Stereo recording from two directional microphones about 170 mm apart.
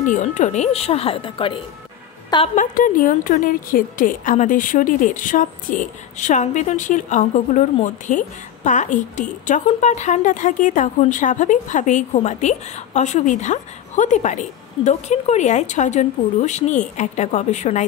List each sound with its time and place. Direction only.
0.0 s speech: 50° left (ahead or behind); by 1.6 s 30° left (ahead or behind)
2.5 s a woman's voice: 50° left (ahead or behind)